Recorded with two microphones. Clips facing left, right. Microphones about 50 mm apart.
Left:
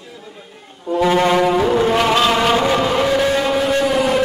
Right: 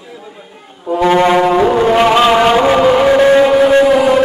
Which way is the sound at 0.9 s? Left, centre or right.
Centre.